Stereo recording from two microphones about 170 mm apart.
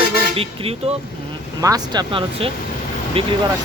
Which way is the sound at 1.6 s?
25° right (ahead or behind).